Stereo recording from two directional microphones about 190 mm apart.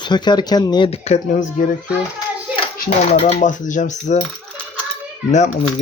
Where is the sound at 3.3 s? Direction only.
40° left (ahead or behind).